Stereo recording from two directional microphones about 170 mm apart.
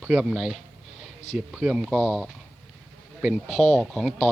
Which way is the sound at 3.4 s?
40° left (ahead or behind).